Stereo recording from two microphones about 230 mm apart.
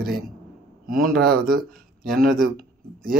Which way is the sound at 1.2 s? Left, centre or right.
Right.